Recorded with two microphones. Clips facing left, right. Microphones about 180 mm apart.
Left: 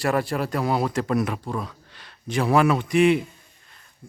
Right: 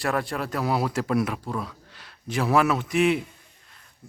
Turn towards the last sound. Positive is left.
turn(degrees=0)  # may be behind; listen again after turning